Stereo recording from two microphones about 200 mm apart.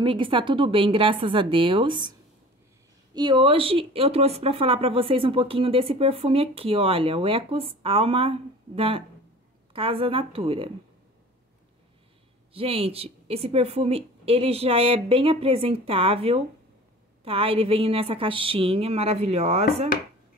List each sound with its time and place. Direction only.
0.0 s speech: 25° right (ahead or behind)
3.2 s speech: 25° right (ahead or behind)
12.5 s speech: 30° right (ahead or behind)